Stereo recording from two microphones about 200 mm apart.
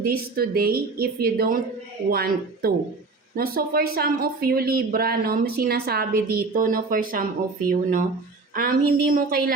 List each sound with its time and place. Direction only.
0.0 s speech: 50° right (ahead or behind)